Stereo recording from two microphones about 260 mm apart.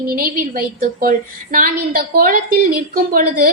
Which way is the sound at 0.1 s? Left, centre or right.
Right.